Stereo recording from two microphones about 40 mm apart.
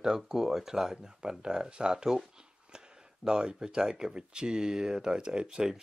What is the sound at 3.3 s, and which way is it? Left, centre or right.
Speech, centre.